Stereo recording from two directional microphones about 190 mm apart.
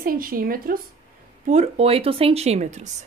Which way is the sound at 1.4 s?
35° right (ahead or behind).